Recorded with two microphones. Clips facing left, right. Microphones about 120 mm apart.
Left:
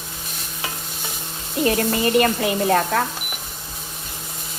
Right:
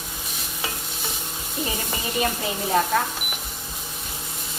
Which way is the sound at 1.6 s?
75° left (ahead or behind).